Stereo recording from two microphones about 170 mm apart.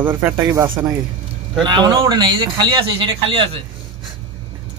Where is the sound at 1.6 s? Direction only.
25° right (ahead or behind).